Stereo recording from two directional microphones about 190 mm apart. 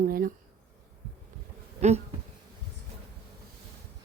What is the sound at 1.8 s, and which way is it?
Insect, 35° right (ahead or behind).